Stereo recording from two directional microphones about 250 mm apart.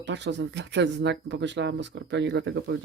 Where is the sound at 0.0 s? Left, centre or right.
Right.